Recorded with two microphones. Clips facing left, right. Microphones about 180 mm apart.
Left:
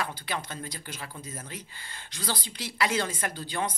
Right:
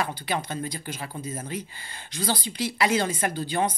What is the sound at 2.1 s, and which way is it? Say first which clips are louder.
Speech: right 6 dB; 20° right (ahead or behind).